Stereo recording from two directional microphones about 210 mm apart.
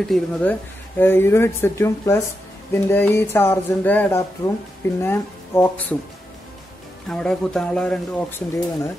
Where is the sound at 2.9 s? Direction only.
10° left (ahead or behind).